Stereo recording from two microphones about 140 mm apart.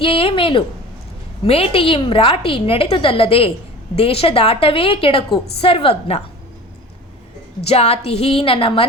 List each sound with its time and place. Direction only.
0.0 s a woman's voice: 40° left (ahead or behind)
7.6 s a woman's voice: 45° left (ahead or behind)